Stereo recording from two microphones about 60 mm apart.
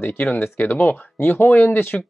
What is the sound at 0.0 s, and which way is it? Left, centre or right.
Speech, left.